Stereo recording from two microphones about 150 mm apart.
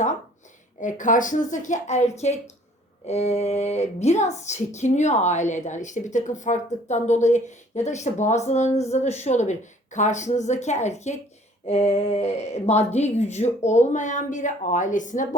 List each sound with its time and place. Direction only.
0.8 s speech: 55° left (ahead or behind)